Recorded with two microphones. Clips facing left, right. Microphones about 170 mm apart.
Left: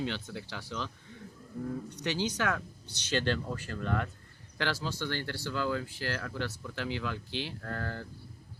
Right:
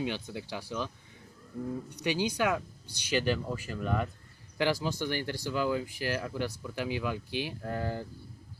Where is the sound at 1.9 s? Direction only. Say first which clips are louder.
Right 5 dB; 10° right (ahead or behind).